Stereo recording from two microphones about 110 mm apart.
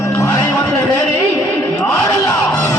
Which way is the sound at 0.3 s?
30° left (ahead or behind).